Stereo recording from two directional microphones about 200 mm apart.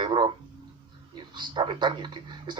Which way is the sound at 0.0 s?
20° right (ahead or behind).